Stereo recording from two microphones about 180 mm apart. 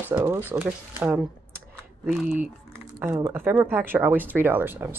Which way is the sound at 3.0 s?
15° right (ahead or behind).